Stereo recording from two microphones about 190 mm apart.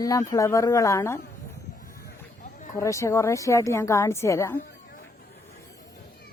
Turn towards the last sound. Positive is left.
turn(degrees=15)  # may be behind; listen again after turning